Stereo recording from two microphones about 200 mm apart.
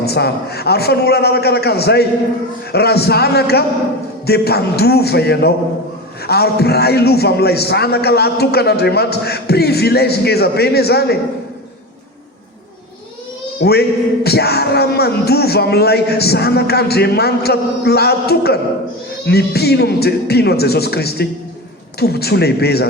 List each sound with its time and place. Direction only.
0.0 s a man's voice: 55° left (ahead or behind)
13.6 s a man's voice: 55° left (ahead or behind)